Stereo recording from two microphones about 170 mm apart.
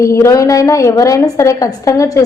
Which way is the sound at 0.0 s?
20° left (ahead or behind).